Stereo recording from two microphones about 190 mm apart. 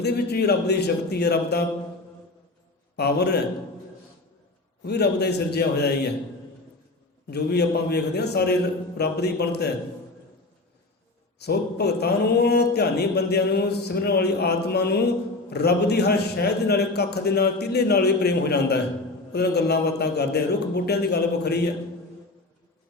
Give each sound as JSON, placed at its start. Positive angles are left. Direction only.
{"t": 0.0, "sound": "speech", "side_deg": 60}
{"t": 2.9, "sound": "speech", "side_deg": 60}
{"t": 4.8, "sound": "speech", "side_deg": 60}
{"t": 7.3, "sound": "speech", "side_deg": 60}
{"t": 11.3, "sound": "speech", "side_deg": 60}